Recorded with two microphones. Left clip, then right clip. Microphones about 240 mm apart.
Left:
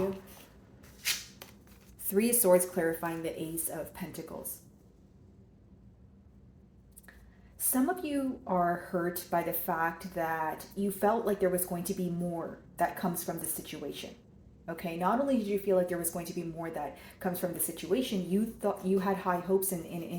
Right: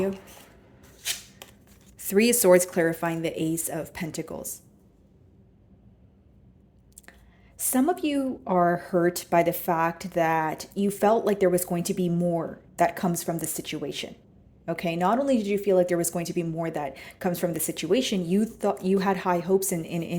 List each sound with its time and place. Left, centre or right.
1.4 s a sound: right
2.0 s a woman's voice: right
7.7 s a woman's voice: right